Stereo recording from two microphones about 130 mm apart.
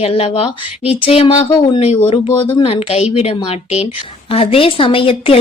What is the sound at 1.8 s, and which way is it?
A woman's voice, 55° left (ahead or behind).